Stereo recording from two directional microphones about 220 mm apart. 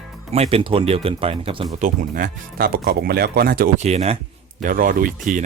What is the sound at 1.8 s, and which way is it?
Speech, 35° right (ahead or behind).